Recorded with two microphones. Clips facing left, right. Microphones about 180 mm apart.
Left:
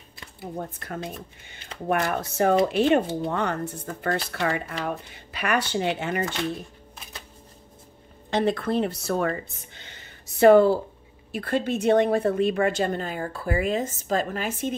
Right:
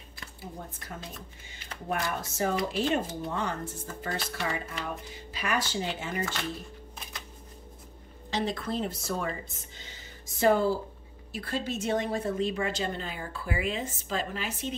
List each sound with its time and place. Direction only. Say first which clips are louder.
0.6 s speech: left 11 dB; 60° left (ahead or behind)
8.3 s a woman's voice: left 7 dB; 55° left (ahead or behind)